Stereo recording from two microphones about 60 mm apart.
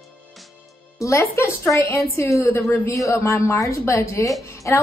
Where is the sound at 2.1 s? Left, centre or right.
Left.